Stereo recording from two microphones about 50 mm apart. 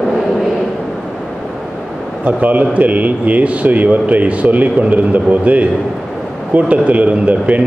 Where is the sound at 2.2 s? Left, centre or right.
Right.